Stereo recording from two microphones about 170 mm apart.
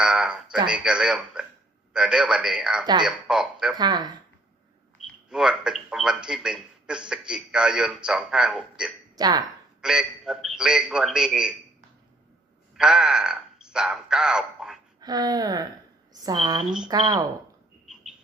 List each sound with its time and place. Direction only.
0.0 s a sound: 5° right (ahead or behind)
0.7 s a man's voice: 5° right (ahead or behind)
3.8 s speech: 25° right (ahead or behind)
5.3 s a man's voice: 5° right (ahead or behind)
9.1 s speech: 25° right (ahead or behind)
9.8 s a man's voice: 5° right (ahead or behind)
12.7 s speech: 5° right (ahead or behind)
15.0 s speech: 20° right (ahead or behind)
16.6 s a man's voice: 5° right (ahead or behind)
16.9 s speech: 25° right (ahead or behind)